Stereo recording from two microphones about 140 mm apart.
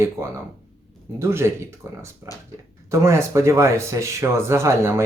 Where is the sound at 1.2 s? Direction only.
20° right (ahead or behind).